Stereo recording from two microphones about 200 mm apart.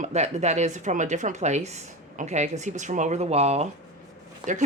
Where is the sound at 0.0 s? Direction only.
35° right (ahead or behind).